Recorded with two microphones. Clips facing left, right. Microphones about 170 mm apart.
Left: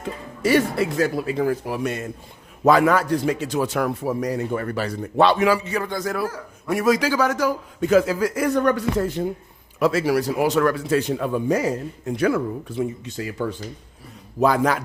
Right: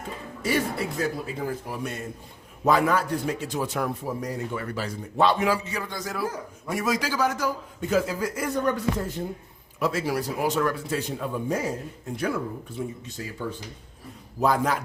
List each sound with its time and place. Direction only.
0.0 s a man's voice: 90° left
4.5 s a man's voice: 55° left (ahead or behind); by 5.5 s 80° left
5.7 s a man's voice: 55° left (ahead or behind); by 13.3 s 80° left
14.4 s a man's voice: 90° left